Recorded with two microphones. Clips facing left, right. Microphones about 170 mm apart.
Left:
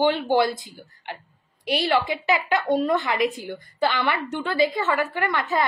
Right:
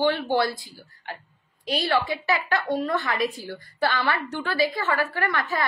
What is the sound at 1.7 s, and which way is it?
A woman's voice, 20° left (ahead or behind).